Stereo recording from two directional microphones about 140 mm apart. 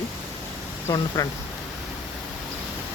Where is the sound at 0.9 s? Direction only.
30° left (ahead or behind).